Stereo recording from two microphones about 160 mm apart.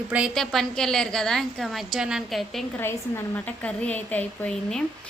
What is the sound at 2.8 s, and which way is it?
A woman's voice, 10° left (ahead or behind).